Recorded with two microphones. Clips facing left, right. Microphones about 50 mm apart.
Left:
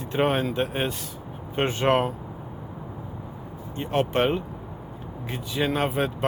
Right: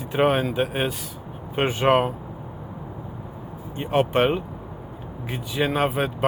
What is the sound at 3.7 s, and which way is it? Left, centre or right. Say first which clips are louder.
Speech: right 3 dB; centre.